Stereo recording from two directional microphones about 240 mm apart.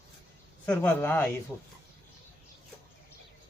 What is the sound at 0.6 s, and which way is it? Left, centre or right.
Speech, centre.